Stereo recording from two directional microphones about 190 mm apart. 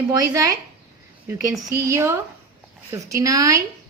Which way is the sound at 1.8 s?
15° right (ahead or behind).